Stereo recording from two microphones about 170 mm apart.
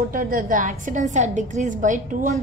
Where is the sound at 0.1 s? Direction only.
55° right (ahead or behind).